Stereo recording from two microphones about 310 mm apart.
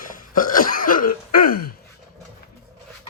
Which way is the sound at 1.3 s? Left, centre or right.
Left.